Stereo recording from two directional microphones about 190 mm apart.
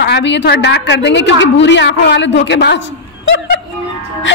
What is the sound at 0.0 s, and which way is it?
A woman's voice, 65° left (ahead or behind).